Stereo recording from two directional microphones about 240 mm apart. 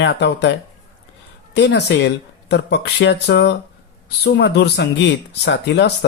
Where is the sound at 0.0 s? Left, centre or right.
Left.